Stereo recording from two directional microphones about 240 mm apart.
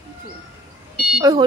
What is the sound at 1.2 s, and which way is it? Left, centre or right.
Speech, centre.